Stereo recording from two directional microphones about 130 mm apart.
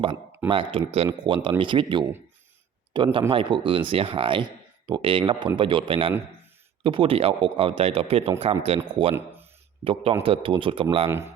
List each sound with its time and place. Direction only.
0.4 s a man's voice: 40° right (ahead or behind)